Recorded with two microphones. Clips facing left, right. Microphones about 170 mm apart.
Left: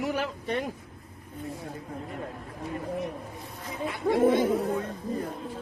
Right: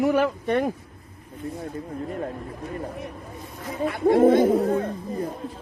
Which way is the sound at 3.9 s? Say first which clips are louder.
Right 6 dB; 55° right (ahead or behind).